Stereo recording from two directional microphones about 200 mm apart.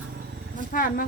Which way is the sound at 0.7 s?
45° left (ahead or behind).